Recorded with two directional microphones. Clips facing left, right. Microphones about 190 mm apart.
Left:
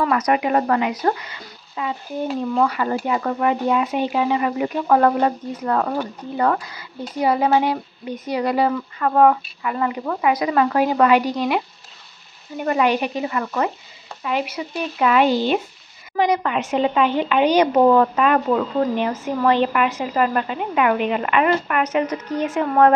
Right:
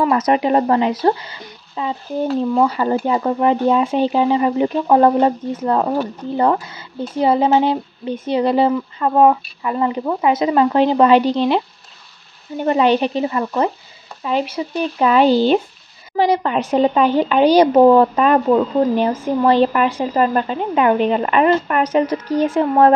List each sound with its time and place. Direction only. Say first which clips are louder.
0.0 s a woman's voice: right 3 dB; 25° right (ahead or behind)